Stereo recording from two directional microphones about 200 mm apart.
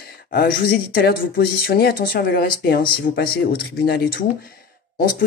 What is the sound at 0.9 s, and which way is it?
Speech, 50° left (ahead or behind).